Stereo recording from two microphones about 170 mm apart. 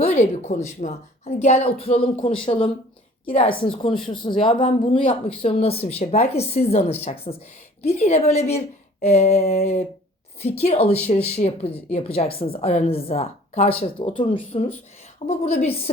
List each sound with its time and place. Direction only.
0.0 s a woman's voice: 40° left (ahead or behind)